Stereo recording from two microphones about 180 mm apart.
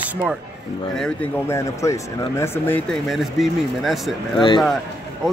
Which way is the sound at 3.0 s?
Centre (ahead or behind).